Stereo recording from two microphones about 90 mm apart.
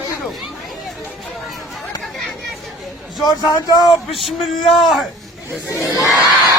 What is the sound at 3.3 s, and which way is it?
Speech, 45° left (ahead or behind).